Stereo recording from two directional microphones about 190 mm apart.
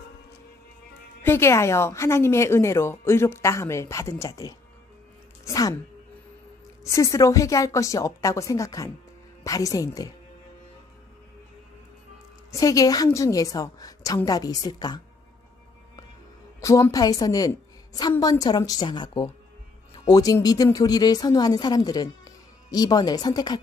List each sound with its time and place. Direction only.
1.2 s a woman's voice: 15° left (ahead or behind)
5.4 s a sound: 20° left (ahead or behind)
6.8 s a woman's voice: 15° left (ahead or behind)
12.4 s speech: 20° left (ahead or behind)
16.6 s speech: 15° left (ahead or behind)